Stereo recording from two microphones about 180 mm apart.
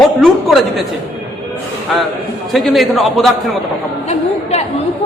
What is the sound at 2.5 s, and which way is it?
A man's voice, centre (ahead or behind).